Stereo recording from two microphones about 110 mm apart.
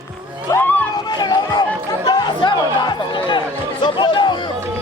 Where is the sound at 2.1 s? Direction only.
40° left (ahead or behind).